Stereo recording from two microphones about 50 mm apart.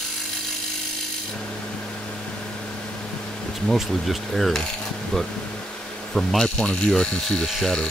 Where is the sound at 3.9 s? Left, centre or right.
Centre.